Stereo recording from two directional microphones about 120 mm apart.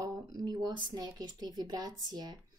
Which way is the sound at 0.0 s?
35° right (ahead or behind).